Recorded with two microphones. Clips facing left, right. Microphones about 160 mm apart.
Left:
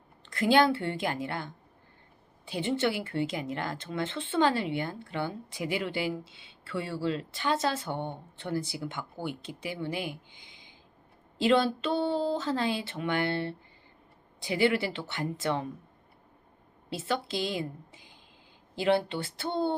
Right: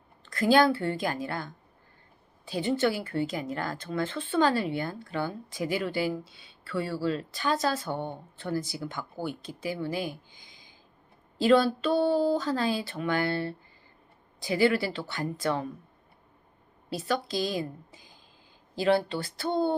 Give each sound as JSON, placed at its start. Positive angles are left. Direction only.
{"t": 0.3, "sound": "speech", "side_deg": 20}
{"t": 2.5, "sound": "speech", "side_deg": 25}
{"t": 10.5, "sound": "a sound", "side_deg": 20}
{"t": 11.3, "sound": "speech", "side_deg": 25}
{"t": 16.9, "sound": "speech", "side_deg": 25}